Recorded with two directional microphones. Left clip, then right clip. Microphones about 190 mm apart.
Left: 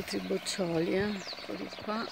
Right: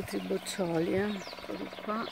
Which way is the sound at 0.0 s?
10° left (ahead or behind).